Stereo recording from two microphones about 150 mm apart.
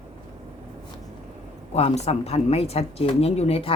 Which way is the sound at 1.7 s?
45° left (ahead or behind).